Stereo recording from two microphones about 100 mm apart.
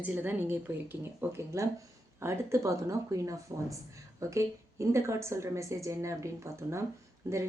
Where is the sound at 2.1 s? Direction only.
30° right (ahead or behind).